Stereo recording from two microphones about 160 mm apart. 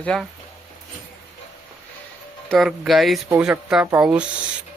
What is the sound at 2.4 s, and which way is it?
Speech, centre (ahead or behind).